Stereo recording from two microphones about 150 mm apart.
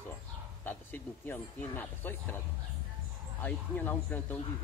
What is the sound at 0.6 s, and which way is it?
Speech, 10° left (ahead or behind).